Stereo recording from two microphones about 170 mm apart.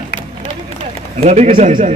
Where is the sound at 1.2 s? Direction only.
40° right (ahead or behind).